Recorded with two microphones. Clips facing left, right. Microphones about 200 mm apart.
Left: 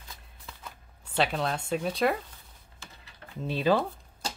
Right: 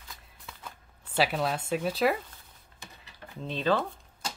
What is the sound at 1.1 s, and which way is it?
Speech, 5° right (ahead or behind).